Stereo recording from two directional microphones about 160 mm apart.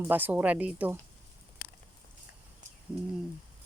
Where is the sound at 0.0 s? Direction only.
10° right (ahead or behind).